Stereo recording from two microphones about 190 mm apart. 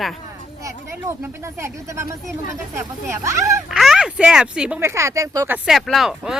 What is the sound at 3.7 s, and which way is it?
Speech, centre (ahead or behind).